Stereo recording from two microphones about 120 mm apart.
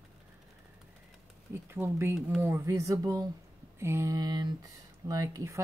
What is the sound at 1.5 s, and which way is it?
Speech, 20° right (ahead or behind).